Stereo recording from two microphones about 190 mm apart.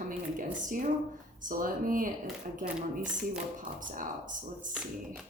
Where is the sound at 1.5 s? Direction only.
45° right (ahead or behind).